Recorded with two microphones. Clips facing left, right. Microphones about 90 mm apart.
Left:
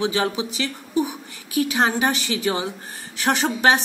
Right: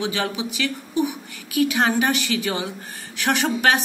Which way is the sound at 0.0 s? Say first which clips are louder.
Left 3 dB; 30° left (ahead or behind).